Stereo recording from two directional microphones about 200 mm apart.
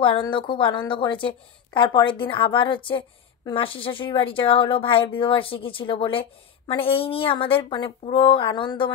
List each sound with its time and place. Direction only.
0.0 s a woman's voice: 25° left (ahead or behind)